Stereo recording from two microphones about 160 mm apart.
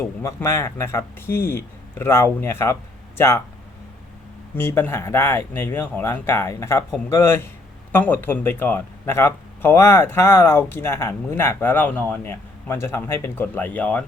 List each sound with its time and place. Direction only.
0.0 s speech: 15° left (ahead or behind)
4.5 s speech: 15° left (ahead or behind)